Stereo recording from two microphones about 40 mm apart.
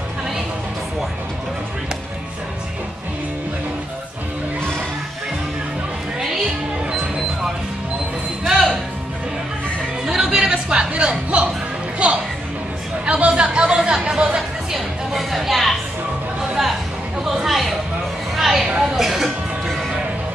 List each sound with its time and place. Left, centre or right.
6.1 s music: centre
8.5 s music: centre
10.0 s chatter: centre
10.3 s a sound: right
12.0 s music: right
13.1 s chatter: right
13.4 s music: right
15.1 s a sound: centre
17.2 s a sound: centre